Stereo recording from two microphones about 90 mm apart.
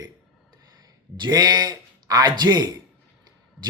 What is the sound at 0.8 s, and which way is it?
A man's voice, 50° right (ahead or behind).